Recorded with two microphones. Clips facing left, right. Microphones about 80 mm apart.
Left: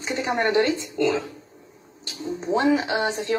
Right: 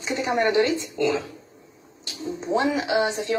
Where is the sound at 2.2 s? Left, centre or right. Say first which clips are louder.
Left 1 dB; centre.